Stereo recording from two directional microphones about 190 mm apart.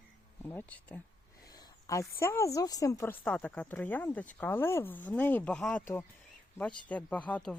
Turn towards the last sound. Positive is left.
turn(degrees=5)  # may be behind; listen again after turning